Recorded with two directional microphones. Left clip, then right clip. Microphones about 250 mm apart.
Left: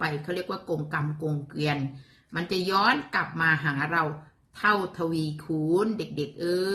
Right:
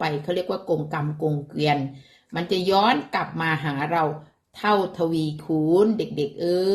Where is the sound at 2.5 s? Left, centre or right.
Centre.